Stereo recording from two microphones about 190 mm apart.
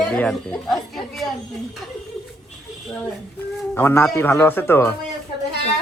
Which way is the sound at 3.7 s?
10° left (ahead or behind).